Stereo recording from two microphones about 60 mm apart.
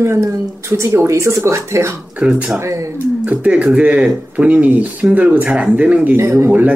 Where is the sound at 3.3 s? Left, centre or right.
Right.